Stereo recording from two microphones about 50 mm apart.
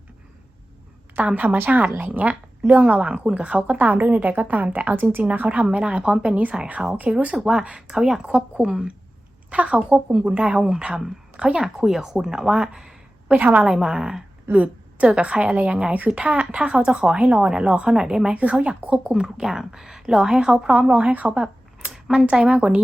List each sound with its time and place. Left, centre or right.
1.2 s a woman's voice: right
1.5 s a woman's voice: right
5.6 s a woman's voice: right
6.3 s a woman's voice: right
7.3 s a woman's voice: centre
9.5 s a woman's voice: right
13.3 s a woman's voice: right
13.7 s a woman's voice: centre
18.3 s a woman's voice: right
20.9 s a woman's voice: right